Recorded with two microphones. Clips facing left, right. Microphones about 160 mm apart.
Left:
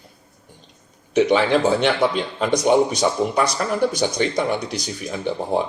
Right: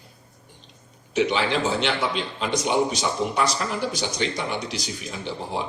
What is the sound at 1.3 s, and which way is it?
Speech, 50° left (ahead or behind).